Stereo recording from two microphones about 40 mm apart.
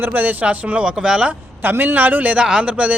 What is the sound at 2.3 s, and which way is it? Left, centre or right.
Speech, right.